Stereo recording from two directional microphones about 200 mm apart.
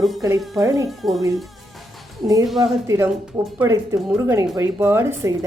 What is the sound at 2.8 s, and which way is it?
A woman's voice, 15° right (ahead or behind).